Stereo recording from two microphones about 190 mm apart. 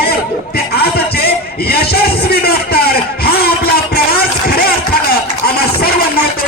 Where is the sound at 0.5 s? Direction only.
55° left (ahead or behind).